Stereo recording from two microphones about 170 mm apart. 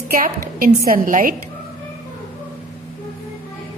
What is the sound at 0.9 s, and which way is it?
Speech, 55° right (ahead or behind).